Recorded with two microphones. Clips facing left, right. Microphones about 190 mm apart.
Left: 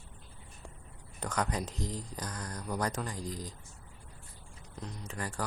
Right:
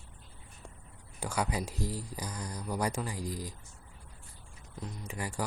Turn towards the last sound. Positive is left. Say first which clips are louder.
# right 1 dB
turn(degrees=-10)  # may be behind; listen again after turning